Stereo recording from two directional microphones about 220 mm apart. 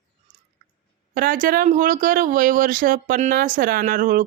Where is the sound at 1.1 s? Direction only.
40° right (ahead or behind).